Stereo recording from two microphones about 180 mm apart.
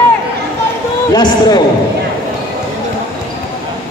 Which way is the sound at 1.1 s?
20° left (ahead or behind).